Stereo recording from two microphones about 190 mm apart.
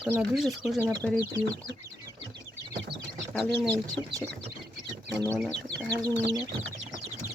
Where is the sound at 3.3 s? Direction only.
Centre (ahead or behind).